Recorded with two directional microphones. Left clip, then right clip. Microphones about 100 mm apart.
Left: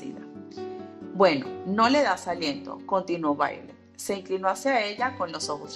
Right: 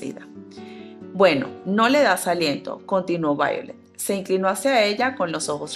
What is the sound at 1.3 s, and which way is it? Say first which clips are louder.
Speech: right 5 dB; 40° right (ahead or behind).